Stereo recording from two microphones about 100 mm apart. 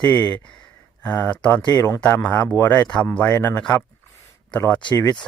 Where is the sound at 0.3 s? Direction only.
15° left (ahead or behind).